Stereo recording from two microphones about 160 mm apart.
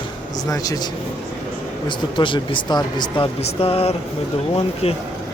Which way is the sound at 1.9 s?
30° left (ahead or behind).